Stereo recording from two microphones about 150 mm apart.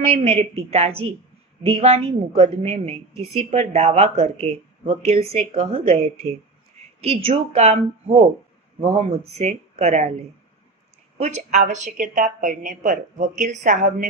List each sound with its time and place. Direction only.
0.0 s a woman's voice: 40° right (ahead or behind)
11.1 s a woman's voice: 50° right (ahead or behind)